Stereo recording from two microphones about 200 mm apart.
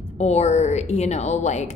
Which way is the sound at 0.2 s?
35° left (ahead or behind).